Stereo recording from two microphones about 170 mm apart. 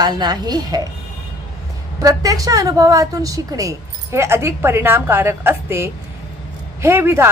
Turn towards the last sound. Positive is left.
turn(degrees=-15)  # may be behind; listen again after turning